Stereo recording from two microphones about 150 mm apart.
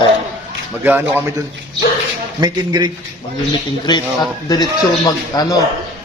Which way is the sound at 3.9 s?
30° left (ahead or behind).